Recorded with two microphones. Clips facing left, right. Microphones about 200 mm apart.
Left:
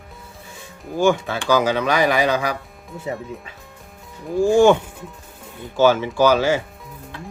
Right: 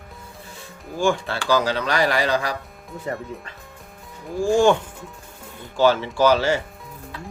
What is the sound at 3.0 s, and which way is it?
Speech, 5° left (ahead or behind).